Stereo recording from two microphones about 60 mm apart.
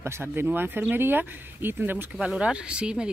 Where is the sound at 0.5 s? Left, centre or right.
Right.